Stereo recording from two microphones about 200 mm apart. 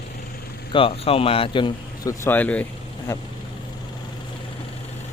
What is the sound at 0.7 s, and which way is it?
Speech, 25° left (ahead or behind).